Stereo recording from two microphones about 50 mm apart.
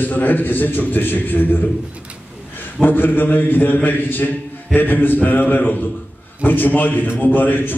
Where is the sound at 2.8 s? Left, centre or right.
Left.